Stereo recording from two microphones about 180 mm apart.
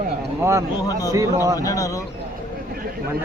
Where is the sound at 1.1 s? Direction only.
20° right (ahead or behind).